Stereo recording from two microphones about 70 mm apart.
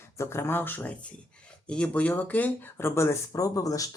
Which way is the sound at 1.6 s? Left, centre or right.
Centre.